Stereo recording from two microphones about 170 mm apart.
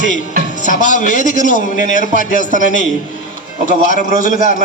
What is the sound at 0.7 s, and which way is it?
Speech, 50° left (ahead or behind).